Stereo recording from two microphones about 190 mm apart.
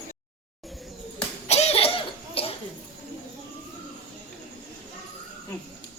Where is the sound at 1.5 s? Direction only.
35° left (ahead or behind).